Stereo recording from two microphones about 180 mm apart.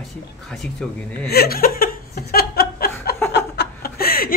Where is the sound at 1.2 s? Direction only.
60° left (ahead or behind).